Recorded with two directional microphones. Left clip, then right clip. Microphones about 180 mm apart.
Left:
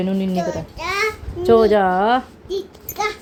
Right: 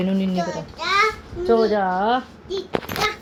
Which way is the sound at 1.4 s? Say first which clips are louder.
Left 5 dB; 70° left (ahead or behind).